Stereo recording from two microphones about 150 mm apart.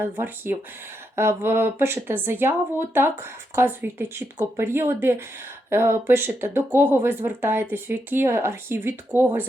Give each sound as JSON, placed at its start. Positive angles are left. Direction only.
{"t": 0.0, "sound": "speech", "side_deg": -15}